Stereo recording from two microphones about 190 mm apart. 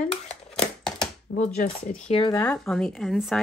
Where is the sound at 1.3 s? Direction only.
75° left (ahead or behind).